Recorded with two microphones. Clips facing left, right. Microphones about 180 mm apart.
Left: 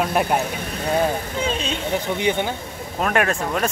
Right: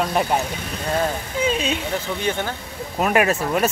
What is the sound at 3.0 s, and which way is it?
Speech, 5° right (ahead or behind).